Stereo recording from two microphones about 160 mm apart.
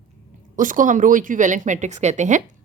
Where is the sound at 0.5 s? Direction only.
55° right (ahead or behind).